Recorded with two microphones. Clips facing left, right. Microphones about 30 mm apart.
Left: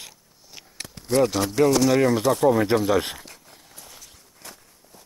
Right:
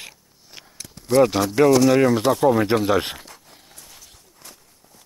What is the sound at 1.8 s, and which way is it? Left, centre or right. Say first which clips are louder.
Speech: right 3 dB; centre.